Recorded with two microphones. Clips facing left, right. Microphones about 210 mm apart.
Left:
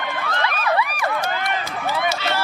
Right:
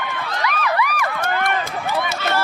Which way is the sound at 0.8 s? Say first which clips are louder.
Right 1 dB; 30° left (ahead or behind).